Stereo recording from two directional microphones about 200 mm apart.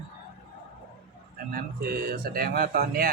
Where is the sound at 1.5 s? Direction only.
50° right (ahead or behind).